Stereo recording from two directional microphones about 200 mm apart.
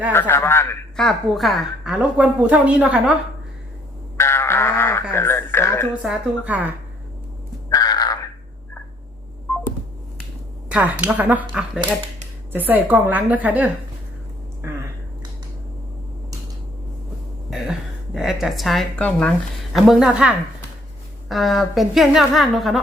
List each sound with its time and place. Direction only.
0.1 s speech: 10° left (ahead or behind)
0.9 s a woman's voice: centre (ahead or behind)
4.2 s a sound: 10° left (ahead or behind)
5.1 s speech: 10° left (ahead or behind)
6.0 s speech: 5° right (ahead or behind)
7.7 s crow: 20° left (ahead or behind)
10.7 s speech: 5° right (ahead or behind)
17.5 s a woman's voice: centre (ahead or behind)